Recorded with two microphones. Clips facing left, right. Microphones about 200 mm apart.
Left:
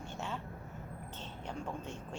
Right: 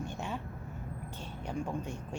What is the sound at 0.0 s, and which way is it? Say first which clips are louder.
Vehicle: right 3 dB; 15° right (ahead or behind).